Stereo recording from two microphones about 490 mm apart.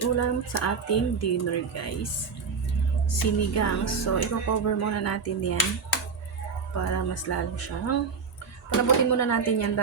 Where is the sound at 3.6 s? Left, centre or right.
Left.